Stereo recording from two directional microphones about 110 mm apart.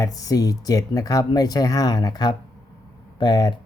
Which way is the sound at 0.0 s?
35° left (ahead or behind).